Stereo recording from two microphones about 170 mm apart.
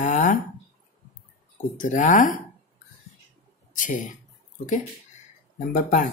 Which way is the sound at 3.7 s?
50° left (ahead or behind).